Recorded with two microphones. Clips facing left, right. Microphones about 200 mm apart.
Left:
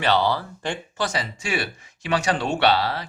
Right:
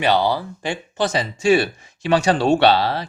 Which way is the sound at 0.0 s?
15° right (ahead or behind).